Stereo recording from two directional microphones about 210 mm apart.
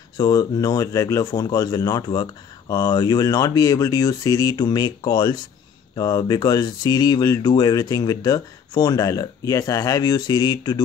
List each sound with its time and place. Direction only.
0.2 s speech: 20° left (ahead or behind)